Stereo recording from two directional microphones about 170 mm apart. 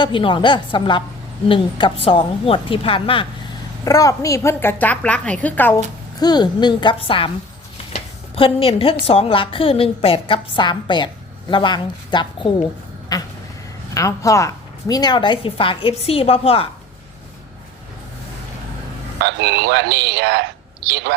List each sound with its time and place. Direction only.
0.0 s a woman's voice: 30° left (ahead or behind)
3.8 s a woman's voice: 20° left (ahead or behind)
6.1 s a woman's voice: 25° left (ahead or behind)
8.4 s a woman's voice: 35° left (ahead or behind)
13.1 s a sound: 20° left (ahead or behind)
13.9 s a woman's voice: 20° left (ahead or behind); by 16.6 s 35° left (ahead or behind)
19.2 s speech: 90° right